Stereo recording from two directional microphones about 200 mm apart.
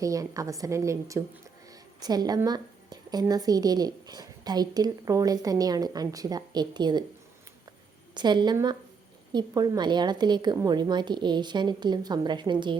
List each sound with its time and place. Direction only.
0.0 s a woman's voice: 15° right (ahead or behind)
8.1 s a woman's voice: 20° right (ahead or behind)